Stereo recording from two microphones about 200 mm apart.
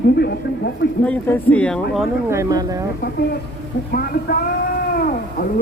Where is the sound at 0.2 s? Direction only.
55° left (ahead or behind).